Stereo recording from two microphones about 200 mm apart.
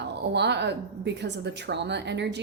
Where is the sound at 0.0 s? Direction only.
60° right (ahead or behind).